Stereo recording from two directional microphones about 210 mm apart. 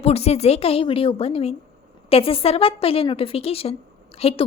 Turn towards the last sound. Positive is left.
turn(degrees=30)  # may be behind; listen again after turning